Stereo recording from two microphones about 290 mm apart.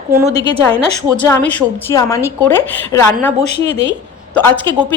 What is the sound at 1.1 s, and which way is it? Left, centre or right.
A woman's voice, centre.